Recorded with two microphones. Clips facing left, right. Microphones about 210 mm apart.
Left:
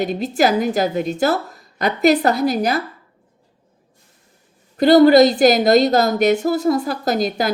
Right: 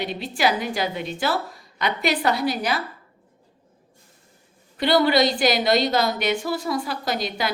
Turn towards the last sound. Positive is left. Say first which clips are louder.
# left 7 dB
turn(degrees=45)  # may be behind; listen again after turning